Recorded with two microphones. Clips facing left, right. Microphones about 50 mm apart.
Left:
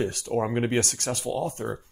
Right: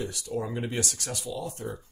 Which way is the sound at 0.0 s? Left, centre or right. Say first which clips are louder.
Left 6 dB; left.